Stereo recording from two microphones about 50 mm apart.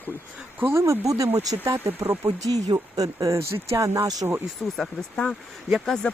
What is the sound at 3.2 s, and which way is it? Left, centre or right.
Speech, right.